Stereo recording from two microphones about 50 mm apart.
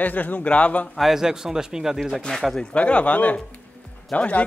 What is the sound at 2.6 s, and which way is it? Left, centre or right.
Speech, left.